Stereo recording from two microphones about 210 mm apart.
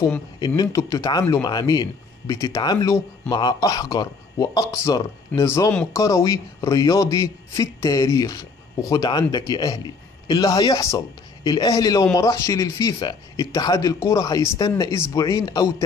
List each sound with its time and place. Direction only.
0.0 s speech: 10° left (ahead or behind)